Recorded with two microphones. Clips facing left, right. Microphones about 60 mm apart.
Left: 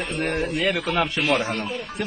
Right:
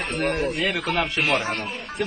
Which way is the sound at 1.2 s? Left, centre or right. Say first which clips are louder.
Left 1 dB; right.